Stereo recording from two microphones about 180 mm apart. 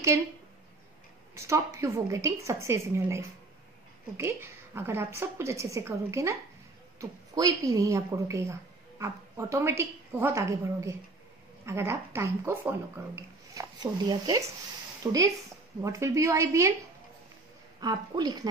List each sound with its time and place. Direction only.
1.3 s speech: 15° right (ahead or behind)
4.2 s speech: 15° right (ahead or behind)
17.7 s a woman's voice: 25° right (ahead or behind)